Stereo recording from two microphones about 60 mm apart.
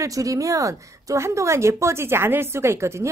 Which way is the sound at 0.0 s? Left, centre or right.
Right.